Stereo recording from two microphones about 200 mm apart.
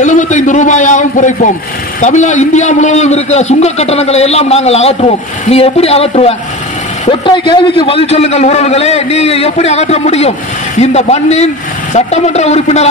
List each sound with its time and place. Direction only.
0.0 s a man's voice: 40° left (ahead or behind)